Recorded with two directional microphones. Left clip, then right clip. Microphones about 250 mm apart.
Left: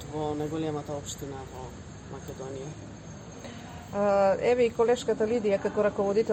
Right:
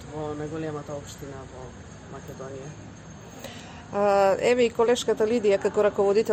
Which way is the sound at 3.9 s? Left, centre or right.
Right.